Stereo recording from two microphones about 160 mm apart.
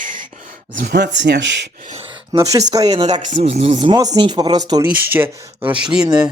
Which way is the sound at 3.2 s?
45° right (ahead or behind).